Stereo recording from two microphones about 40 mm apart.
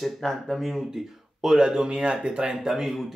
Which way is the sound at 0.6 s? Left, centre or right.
Centre.